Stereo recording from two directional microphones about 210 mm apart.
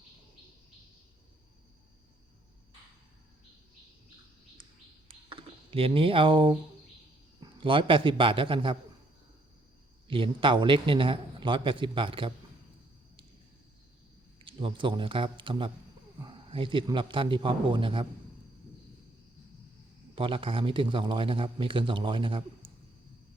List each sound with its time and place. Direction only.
5.0 s a sound: 25° right (ahead or behind)
7.6 s a man's voice: 25° right (ahead or behind)
10.1 s a man's voice: 25° right (ahead or behind)
14.4 s a man's voice: 25° right (ahead or behind)
20.1 s a man's voice: 25° right (ahead or behind)